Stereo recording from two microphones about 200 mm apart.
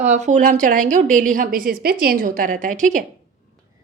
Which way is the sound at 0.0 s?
35° right (ahead or behind).